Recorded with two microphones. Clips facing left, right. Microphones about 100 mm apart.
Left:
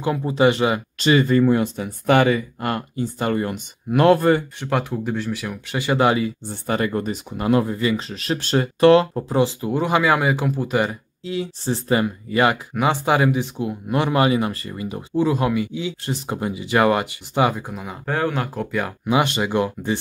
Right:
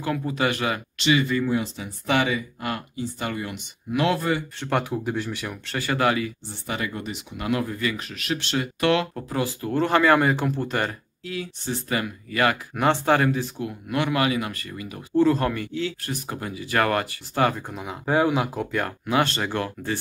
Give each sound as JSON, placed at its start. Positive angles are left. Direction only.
{"t": 0.0, "sound": "speech", "side_deg": 25}
{"t": 0.9, "sound": "speech", "side_deg": 40}
{"t": 4.6, "sound": "speech", "side_deg": 0}
{"t": 5.7, "sound": "speech", "side_deg": 20}
{"t": 6.4, "sound": "speech", "side_deg": 45}
{"t": 11.2, "sound": "speech", "side_deg": 30}
{"t": 12.7, "sound": "speech", "side_deg": 10}
{"t": 15.1, "sound": "speech", "side_deg": 15}
{"t": 16.1, "sound": "speech", "side_deg": 20}
{"t": 19.0, "sound": "speech", "side_deg": 15}